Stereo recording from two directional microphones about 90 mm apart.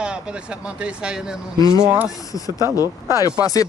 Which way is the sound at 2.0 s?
40° left (ahead or behind).